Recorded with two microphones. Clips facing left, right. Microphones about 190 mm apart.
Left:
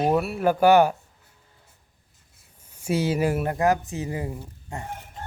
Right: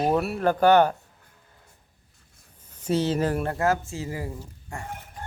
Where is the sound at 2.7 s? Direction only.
10° left (ahead or behind).